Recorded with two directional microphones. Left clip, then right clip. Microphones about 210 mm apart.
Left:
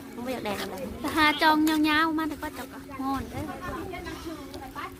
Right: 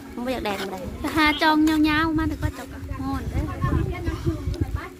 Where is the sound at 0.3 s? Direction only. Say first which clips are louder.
Right 5 dB; 50° right (ahead or behind).